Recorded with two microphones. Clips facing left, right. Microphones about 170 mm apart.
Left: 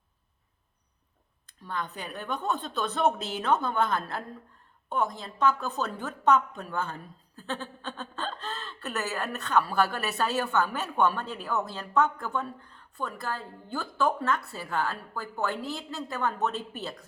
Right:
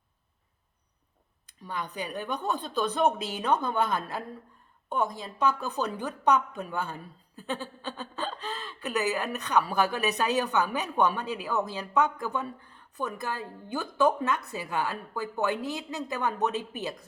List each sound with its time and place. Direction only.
1.6 s a woman's voice: 15° right (ahead or behind)